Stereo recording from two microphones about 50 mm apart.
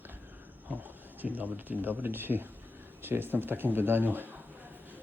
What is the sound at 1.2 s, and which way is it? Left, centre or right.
Speech, right.